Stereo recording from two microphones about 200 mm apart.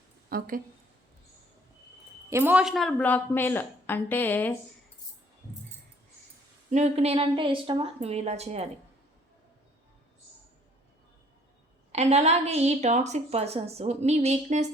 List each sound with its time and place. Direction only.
0.3 s a woman's voice: 45° right (ahead or behind)
2.3 s a woman's voice: 10° right (ahead or behind); by 4.5 s 10° left (ahead or behind)
6.7 s a woman's voice: 35° right (ahead or behind)
11.9 s a woman's voice: 35° right (ahead or behind)